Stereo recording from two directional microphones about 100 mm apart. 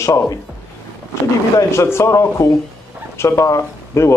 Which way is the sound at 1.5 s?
25° left (ahead or behind).